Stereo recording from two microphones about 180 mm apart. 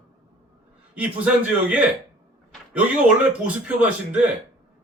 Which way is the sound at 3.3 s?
5° right (ahead or behind).